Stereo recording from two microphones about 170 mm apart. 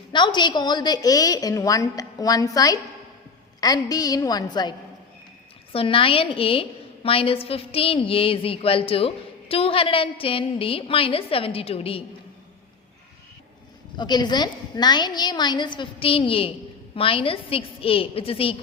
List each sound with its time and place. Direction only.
0.1 s a woman's voice: 25° left (ahead or behind)
5.7 s a woman's voice: 35° left (ahead or behind)
13.9 s a woman's voice: 25° left (ahead or behind)